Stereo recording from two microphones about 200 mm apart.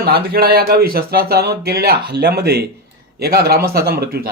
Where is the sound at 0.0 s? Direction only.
50° right (ahead or behind).